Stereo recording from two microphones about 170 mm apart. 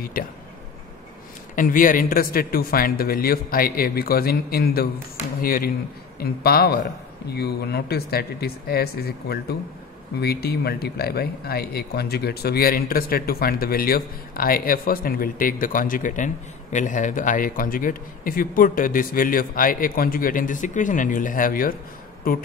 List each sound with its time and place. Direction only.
0.0 s speech: 55° left (ahead or behind)
1.5 s speech: 50° left (ahead or behind)